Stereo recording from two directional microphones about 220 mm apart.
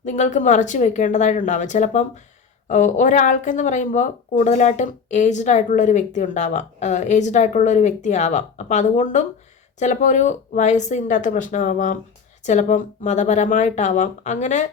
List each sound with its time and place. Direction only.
0.0 s speech: 35° left (ahead or behind)